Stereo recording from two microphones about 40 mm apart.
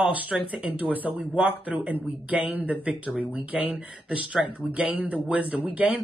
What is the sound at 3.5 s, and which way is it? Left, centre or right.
Speech, right.